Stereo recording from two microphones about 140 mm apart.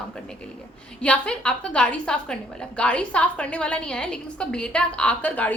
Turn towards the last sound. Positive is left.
turn(degrees=10)  # may be behind; listen again after turning